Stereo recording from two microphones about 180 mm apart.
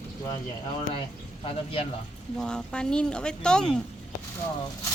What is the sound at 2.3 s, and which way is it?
A woman's voice, 5° left (ahead or behind).